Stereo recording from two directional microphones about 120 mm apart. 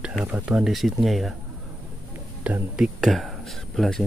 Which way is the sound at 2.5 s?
5° right (ahead or behind).